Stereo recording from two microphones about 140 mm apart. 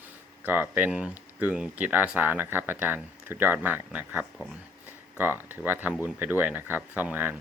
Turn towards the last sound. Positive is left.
turn(degrees=-10)  # may be behind; listen again after turning